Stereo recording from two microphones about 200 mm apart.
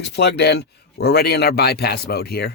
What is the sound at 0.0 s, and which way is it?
Speech, 55° left (ahead or behind).